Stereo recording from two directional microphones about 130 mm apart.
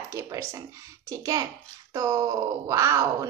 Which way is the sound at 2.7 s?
25° right (ahead or behind).